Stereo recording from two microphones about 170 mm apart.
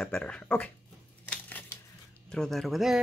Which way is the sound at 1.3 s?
10° left (ahead or behind).